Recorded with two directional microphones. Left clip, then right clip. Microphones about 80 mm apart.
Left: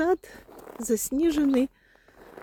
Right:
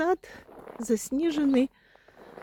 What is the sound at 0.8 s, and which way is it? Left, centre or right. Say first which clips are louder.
Speech: left 2 dB; left.